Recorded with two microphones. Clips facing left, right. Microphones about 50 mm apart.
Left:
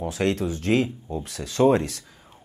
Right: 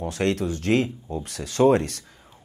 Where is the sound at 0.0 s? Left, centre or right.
Centre.